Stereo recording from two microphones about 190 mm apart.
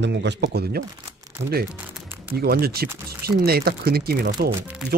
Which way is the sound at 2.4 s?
55° right (ahead or behind).